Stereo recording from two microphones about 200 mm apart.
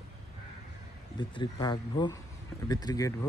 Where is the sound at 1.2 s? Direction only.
20° left (ahead or behind).